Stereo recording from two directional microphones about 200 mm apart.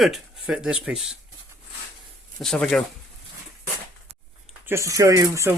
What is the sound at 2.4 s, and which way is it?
Speech, 5° left (ahead or behind).